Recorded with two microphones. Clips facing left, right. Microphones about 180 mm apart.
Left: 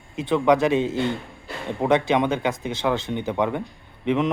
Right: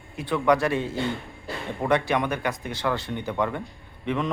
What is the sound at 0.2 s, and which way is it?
A man's voice, 20° left (ahead or behind).